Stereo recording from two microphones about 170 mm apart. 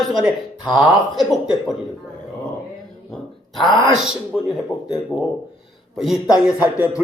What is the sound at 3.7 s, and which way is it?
Speech, 30° left (ahead or behind).